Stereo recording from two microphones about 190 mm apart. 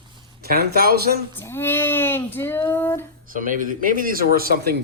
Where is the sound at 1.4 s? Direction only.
10° left (ahead or behind).